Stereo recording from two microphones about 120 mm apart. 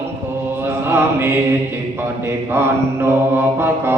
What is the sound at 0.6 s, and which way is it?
Chant, 20° right (ahead or behind).